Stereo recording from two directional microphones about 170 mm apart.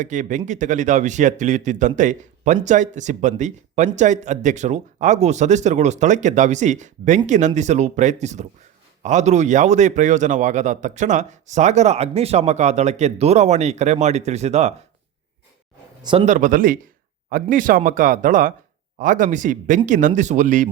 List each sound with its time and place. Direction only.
0.0 s a man's voice: 45° right (ahead or behind)
16.2 s a man's voice: 50° right (ahead or behind)